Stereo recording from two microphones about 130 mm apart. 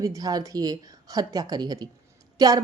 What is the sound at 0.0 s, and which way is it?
A woman's voice, 25° right (ahead or behind).